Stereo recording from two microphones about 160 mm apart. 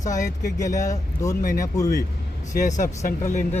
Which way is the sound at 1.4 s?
60° left (ahead or behind).